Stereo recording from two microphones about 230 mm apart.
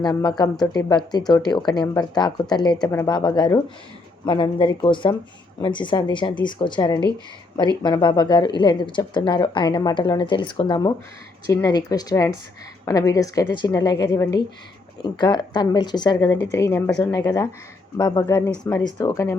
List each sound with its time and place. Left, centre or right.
0.0 s speech: centre